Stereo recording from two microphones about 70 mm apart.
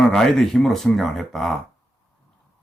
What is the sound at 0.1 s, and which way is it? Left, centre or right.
Speech, centre.